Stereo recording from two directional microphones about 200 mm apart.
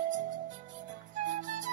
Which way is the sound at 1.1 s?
40° right (ahead or behind).